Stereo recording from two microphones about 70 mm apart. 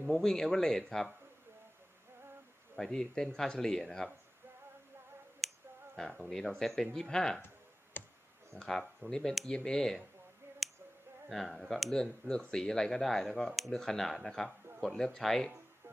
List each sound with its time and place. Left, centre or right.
0.1 s speech: centre
2.7 s speech: centre
5.4 s finger snapping: centre
6.0 s speech: centre
7.9 s clicking: left
8.5 s speech: centre
11.3 s speech: centre